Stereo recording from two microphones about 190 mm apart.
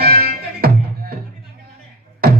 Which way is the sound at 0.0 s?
55° right (ahead or behind).